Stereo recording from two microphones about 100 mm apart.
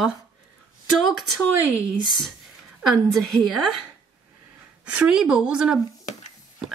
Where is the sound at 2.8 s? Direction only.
Centre (ahead or behind).